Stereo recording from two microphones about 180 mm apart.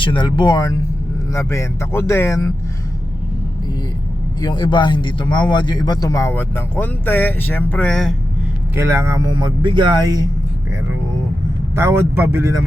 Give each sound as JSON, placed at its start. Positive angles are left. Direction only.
{"t": 0.0, "sound": "a man's voice", "side_deg": 25}
{"t": 4.4, "sound": "a man's voice", "side_deg": 25}
{"t": 8.7, "sound": "speech", "side_deg": -15}
{"t": 11.7, "sound": "speech", "side_deg": -15}